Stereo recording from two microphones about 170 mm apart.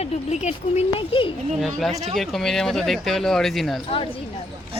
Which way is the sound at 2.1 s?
Centre (ahead or behind).